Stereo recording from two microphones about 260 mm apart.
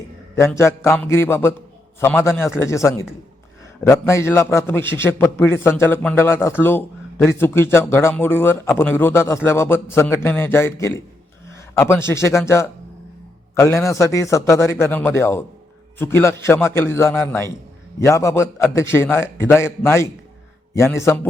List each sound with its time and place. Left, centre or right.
0.3 s a man's voice: centre